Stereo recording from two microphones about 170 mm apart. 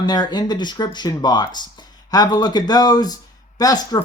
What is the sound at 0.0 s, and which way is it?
Speech, 25° left (ahead or behind).